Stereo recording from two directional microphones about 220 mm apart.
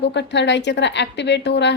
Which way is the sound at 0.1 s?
50° left (ahead or behind).